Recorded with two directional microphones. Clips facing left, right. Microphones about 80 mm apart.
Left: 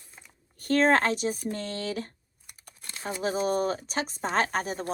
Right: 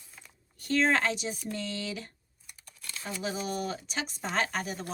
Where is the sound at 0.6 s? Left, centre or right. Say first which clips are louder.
Left 4 dB; left.